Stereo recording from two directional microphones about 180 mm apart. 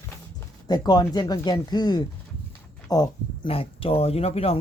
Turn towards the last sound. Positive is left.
turn(degrees=35)  # may be behind; listen again after turning